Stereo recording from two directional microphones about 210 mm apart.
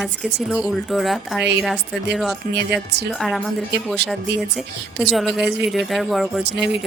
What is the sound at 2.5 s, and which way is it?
Speech, 55° right (ahead or behind).